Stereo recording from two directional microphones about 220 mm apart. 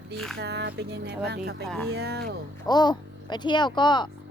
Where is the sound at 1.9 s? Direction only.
45° right (ahead or behind).